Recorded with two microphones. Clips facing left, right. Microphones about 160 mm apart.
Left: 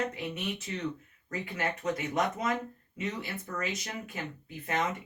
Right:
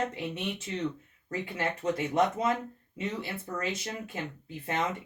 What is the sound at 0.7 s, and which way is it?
Speech, 25° right (ahead or behind).